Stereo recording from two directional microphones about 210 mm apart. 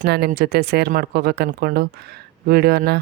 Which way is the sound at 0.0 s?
45° right (ahead or behind).